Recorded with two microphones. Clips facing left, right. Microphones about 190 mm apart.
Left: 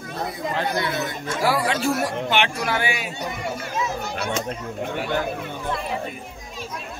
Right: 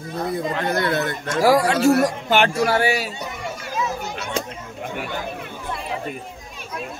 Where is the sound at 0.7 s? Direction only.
55° right (ahead or behind).